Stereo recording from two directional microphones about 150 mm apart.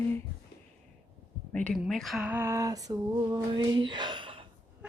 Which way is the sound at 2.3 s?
15° right (ahead or behind).